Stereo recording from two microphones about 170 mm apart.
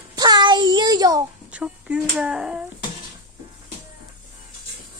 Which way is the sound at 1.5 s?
5° right (ahead or behind).